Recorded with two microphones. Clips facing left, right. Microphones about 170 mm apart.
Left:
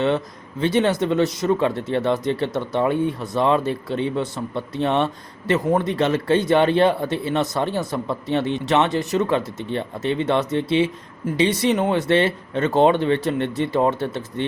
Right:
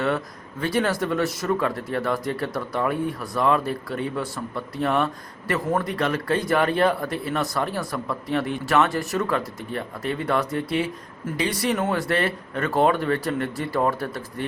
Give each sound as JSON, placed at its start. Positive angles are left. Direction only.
{"t": 0.6, "sound": "speech", "side_deg": 25}